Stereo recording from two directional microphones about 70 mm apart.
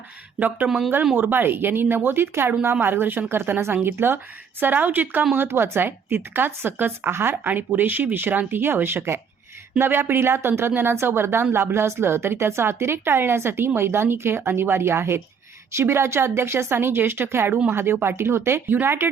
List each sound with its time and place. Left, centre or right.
0.3 s a woman's voice: right